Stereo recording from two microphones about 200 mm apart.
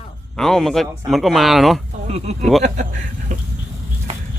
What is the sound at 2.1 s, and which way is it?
Speech, 30° right (ahead or behind).